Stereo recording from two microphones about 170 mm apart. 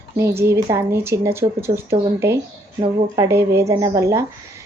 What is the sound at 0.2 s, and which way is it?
Speech, 15° right (ahead or behind).